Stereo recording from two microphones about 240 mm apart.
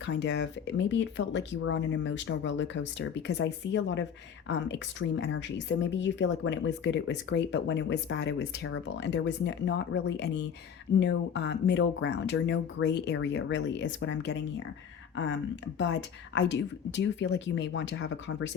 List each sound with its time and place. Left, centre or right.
0.0 s speech: left
15.8 s speech: left